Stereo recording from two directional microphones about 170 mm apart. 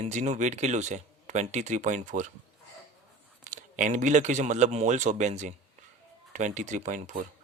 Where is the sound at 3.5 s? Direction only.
45° right (ahead or behind).